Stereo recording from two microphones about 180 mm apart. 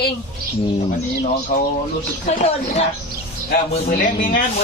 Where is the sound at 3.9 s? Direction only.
45° left (ahead or behind).